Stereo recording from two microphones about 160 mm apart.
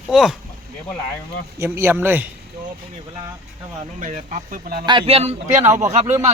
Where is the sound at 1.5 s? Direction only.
15° right (ahead or behind).